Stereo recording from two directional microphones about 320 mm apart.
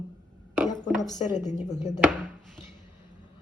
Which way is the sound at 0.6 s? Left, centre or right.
Centre.